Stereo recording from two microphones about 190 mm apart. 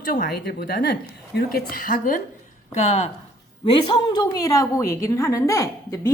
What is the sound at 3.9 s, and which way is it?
A woman's voice, 20° left (ahead or behind).